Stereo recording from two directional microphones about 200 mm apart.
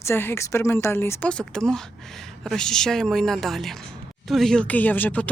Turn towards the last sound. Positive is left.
turn(degrees=10)  # may be behind; listen again after turning